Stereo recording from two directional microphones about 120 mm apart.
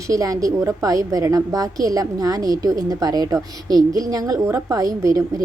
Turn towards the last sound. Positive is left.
turn(degrees=-30)  # may be behind; listen again after turning